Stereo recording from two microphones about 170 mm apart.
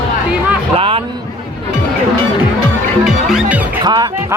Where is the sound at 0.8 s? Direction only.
30° right (ahead or behind).